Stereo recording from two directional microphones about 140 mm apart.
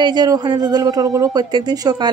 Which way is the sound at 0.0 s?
30° right (ahead or behind).